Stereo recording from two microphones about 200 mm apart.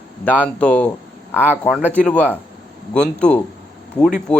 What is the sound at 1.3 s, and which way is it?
Speech, 5° right (ahead or behind).